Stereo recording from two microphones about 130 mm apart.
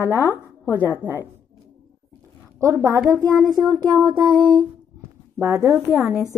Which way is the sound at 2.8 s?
15° right (ahead or behind).